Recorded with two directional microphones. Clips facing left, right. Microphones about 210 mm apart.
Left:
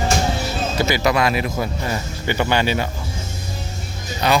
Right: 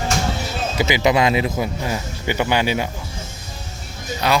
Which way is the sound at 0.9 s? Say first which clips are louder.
Right 3 dB; 20° right (ahead or behind).